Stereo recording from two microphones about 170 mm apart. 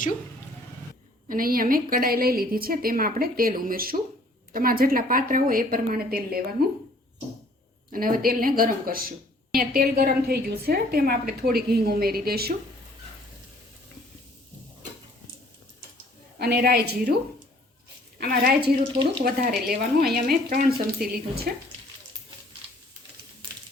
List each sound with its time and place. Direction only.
1.3 s a woman's voice: 55° right (ahead or behind)
7.9 s a woman's voice: 60° right (ahead or behind)
16.4 s a woman's voice: 70° right (ahead or behind)
18.2 s a woman's voice: 65° right (ahead or behind)